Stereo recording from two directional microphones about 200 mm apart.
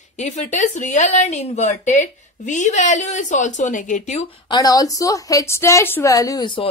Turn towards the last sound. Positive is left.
turn(degrees=20)  # may be behind; listen again after turning